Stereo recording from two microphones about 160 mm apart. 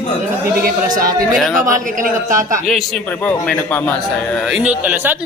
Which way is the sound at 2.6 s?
Centre (ahead or behind).